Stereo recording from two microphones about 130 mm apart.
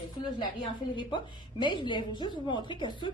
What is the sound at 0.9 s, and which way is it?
A woman's voice, 40° left (ahead or behind).